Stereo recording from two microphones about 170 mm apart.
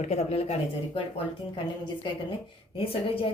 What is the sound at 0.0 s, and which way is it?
Speech, 40° left (ahead or behind).